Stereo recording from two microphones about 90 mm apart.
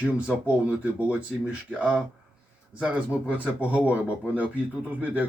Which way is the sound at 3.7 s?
15° right (ahead or behind).